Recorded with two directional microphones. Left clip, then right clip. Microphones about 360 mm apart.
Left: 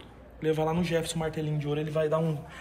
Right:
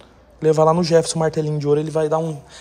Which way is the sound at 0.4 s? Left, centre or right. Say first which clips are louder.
Right 13 dB; centre.